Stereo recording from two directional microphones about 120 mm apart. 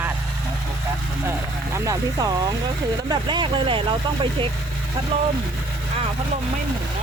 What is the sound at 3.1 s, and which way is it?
Speech, 40° right (ahead or behind).